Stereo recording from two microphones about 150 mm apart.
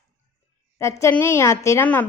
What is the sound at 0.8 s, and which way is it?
A woman's voice, 20° left (ahead or behind).